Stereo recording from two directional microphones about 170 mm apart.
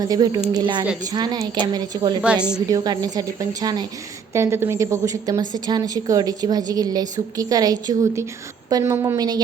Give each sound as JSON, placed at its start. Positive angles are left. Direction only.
{"t": 0.0, "sound": "a woman's voice", "side_deg": -25}
{"t": 2.2, "sound": "a woman's voice", "side_deg": -5}
{"t": 2.6, "sound": "a woman's voice", "side_deg": -20}